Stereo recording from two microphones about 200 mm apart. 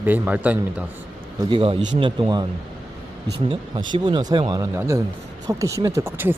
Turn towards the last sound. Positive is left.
turn(degrees=-10)  # may be behind; listen again after turning